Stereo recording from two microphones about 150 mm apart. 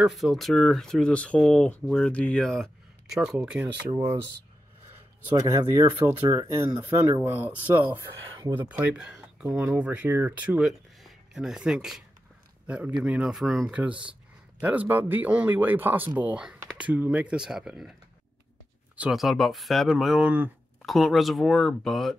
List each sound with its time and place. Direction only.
0.0 s speech: centre (ahead or behind)
5.3 s speech: 25° right (ahead or behind)
10.7 s a sound: centre (ahead or behind)
12.6 s speech: 10° right (ahead or behind)
18.9 s speech: centre (ahead or behind)
20.8 s speech: centre (ahead or behind)